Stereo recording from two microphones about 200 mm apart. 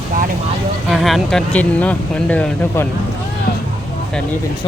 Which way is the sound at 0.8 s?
Centre (ahead or behind).